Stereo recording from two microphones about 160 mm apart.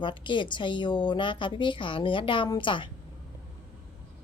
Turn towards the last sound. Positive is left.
turn(degrees=30)  # may be behind; listen again after turning